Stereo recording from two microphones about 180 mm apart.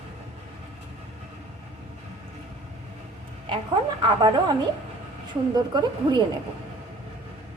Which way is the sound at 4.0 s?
25° right (ahead or behind).